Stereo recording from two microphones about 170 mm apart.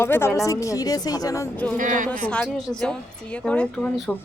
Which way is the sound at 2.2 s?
5° left (ahead or behind).